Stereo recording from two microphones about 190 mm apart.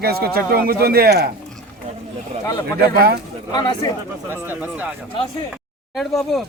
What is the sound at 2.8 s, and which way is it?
Speech, 55° right (ahead or behind).